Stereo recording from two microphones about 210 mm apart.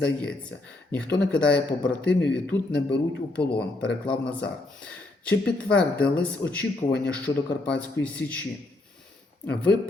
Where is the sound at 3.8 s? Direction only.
5° left (ahead or behind).